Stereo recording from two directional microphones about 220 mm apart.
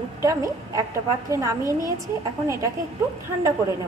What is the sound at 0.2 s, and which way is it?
A woman's voice, 15° right (ahead or behind).